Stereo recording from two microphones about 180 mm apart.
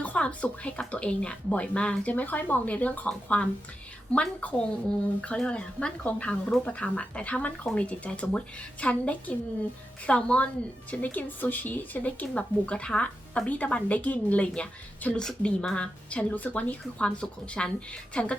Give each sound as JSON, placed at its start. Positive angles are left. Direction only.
{"t": 0.0, "sound": "a woman's voice", "side_deg": 10}